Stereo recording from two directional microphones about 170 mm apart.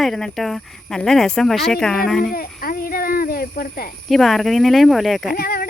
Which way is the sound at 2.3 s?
60° left (ahead or behind).